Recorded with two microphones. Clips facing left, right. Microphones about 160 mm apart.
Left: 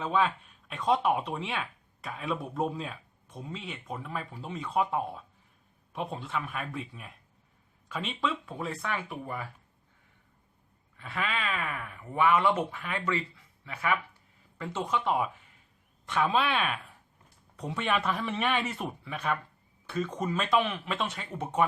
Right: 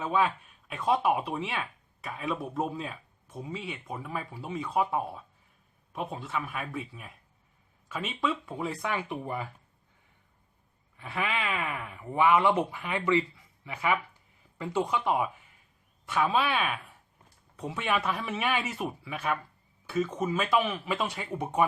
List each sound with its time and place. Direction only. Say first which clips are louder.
0.0 s speech: even; 5° right (ahead or behind)
10.9 s speech: right 2 dB; 15° right (ahead or behind)